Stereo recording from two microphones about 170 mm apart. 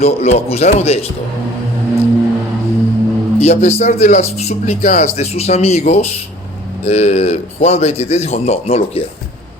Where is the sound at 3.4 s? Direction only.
40° left (ahead or behind).